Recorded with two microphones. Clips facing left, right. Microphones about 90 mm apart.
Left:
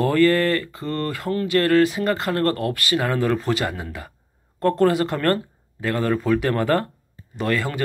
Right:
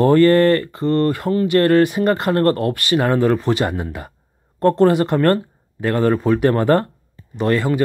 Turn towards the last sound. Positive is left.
turn(degrees=-30)  # may be behind; listen again after turning